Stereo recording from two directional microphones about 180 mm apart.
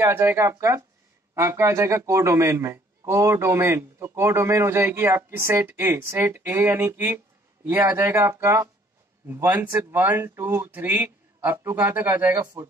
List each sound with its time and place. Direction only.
0.0 s a man's voice: 15° right (ahead or behind)